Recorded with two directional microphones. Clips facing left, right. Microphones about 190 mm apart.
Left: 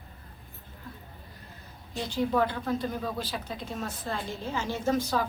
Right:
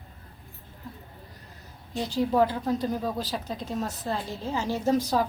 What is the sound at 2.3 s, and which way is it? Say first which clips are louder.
A woman's voice: right 5 dB; 30° right (ahead or behind).